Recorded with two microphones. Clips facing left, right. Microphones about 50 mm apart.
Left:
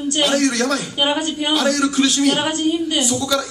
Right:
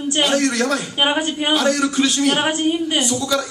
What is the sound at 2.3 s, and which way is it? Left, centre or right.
Speech, right.